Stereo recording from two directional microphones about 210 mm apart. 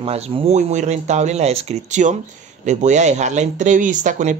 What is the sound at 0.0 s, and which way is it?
Speech, 30° right (ahead or behind).